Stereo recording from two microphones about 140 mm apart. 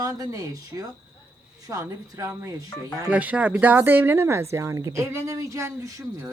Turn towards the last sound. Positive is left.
turn(degrees=-20)  # may be behind; listen again after turning